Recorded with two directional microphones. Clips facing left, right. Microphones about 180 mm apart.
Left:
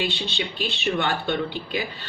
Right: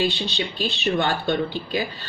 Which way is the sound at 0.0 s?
40° right (ahead or behind).